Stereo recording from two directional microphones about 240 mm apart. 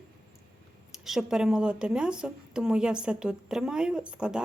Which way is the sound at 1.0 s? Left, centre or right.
Centre.